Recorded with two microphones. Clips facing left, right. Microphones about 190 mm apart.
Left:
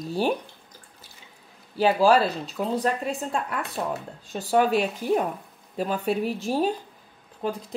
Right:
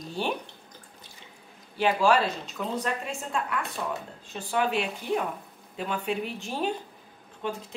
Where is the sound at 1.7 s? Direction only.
35° left (ahead or behind).